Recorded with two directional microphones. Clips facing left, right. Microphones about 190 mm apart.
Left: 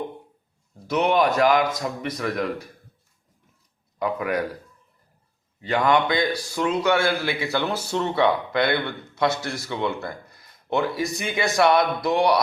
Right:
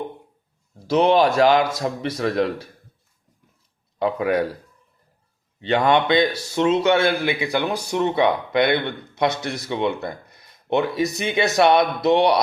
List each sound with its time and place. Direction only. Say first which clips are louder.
0.9 s a man's voice: right 4 dB; 30° right (ahead or behind)
3.9 s speech: right 4 dB; 30° right (ahead or behind)
5.5 s a man's voice: right 2 dB; 25° right (ahead or behind)